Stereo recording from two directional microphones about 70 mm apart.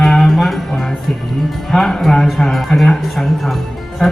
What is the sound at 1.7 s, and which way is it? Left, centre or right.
A man's voice, centre.